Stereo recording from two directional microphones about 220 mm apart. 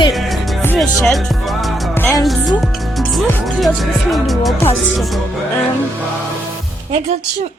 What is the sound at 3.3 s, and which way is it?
Speech, centre (ahead or behind).